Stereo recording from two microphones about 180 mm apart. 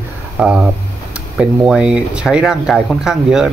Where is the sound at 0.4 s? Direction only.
5° right (ahead or behind).